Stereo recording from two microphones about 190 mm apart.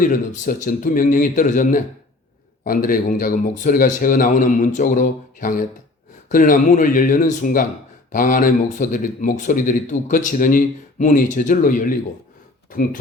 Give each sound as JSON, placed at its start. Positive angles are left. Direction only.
{"t": 0.0, "sound": "speech", "side_deg": 45}